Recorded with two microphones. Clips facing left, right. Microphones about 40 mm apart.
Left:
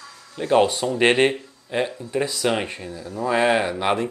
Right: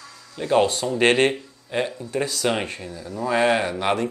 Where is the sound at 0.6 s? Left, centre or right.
Left.